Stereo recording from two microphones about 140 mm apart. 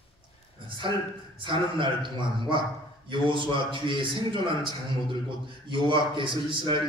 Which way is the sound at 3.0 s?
35° right (ahead or behind).